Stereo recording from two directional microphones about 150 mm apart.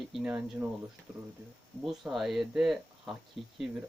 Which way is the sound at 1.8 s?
Centre (ahead or behind).